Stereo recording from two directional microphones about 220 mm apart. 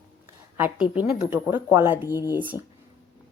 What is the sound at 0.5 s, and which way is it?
Speech, 10° right (ahead or behind).